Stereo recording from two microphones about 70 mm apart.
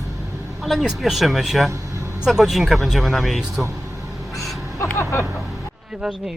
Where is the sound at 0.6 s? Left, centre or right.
Centre.